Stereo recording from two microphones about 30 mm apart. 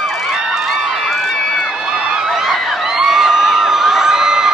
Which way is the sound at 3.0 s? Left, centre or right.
Centre.